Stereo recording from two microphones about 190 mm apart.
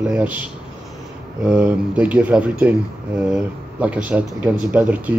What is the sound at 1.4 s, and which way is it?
Speech, 5° right (ahead or behind).